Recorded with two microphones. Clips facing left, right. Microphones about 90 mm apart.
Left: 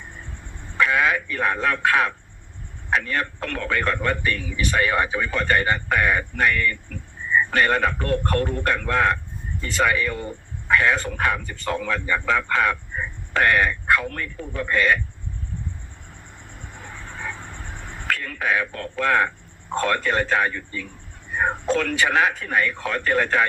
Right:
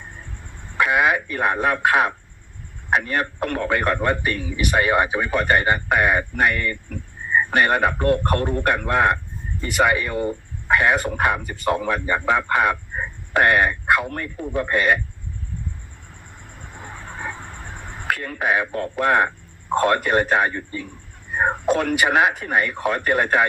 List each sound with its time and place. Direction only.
0.8 s speech: 20° right (ahead or behind)
4.4 s a man's voice: 35° right (ahead or behind)
4.6 s a man's voice: 20° right (ahead or behind)
16.8 s vehicle: 35° right (ahead or behind)
18.1 s speech: 25° right (ahead or behind)
20.5 s a man's voice: 30° right (ahead or behind)
21.5 s speech: 20° right (ahead or behind)